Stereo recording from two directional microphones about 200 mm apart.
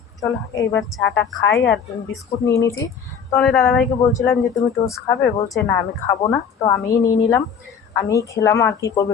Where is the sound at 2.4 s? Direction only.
15° left (ahead or behind).